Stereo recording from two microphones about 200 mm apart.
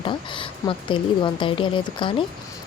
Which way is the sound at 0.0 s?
25° left (ahead or behind).